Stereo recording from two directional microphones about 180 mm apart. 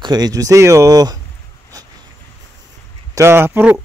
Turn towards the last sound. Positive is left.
turn(degrees=-10)  # may be behind; listen again after turning